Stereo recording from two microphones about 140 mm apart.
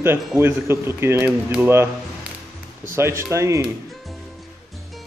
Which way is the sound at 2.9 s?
20° right (ahead or behind).